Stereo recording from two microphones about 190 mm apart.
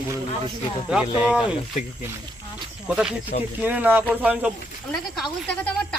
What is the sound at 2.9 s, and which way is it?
Speech, 5° right (ahead or behind).